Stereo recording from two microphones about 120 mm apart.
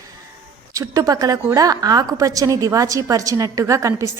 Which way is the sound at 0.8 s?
30° right (ahead or behind).